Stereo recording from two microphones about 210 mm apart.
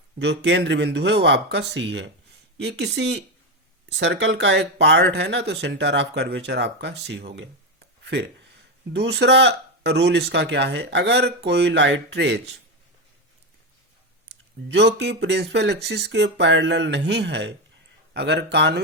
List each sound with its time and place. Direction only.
0.2 s speech: 55° right (ahead or behind)
14.3 s speech: 55° right (ahead or behind)